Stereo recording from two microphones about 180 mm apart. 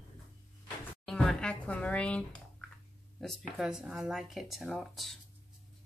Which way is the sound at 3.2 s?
Centre (ahead or behind).